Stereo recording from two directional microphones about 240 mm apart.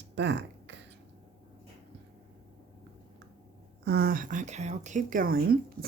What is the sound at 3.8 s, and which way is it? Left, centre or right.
Speech, right.